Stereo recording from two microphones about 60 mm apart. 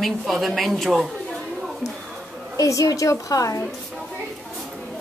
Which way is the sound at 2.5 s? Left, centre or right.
Left.